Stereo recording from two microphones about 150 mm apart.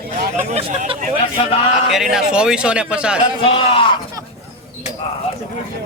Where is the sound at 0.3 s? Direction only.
45° right (ahead or behind).